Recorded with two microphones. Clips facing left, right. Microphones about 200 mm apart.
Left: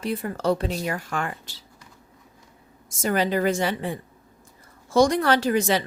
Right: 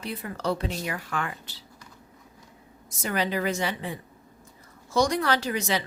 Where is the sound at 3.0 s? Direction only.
45° left (ahead or behind).